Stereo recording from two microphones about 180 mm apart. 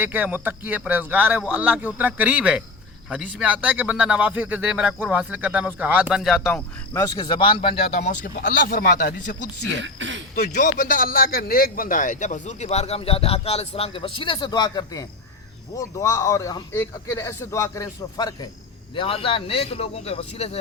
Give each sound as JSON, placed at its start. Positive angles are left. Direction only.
{"t": 0.0, "sound": "speech", "side_deg": -10}
{"t": 6.4, "sound": "speech", "side_deg": 15}
{"t": 7.9, "sound": "speech", "side_deg": 60}
{"t": 9.8, "sound": "speech", "side_deg": -90}
{"t": 10.3, "sound": "a man's voice", "side_deg": 65}